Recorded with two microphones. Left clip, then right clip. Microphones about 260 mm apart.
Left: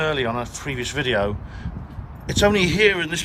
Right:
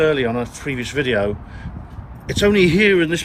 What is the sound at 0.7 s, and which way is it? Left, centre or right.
Speech, left.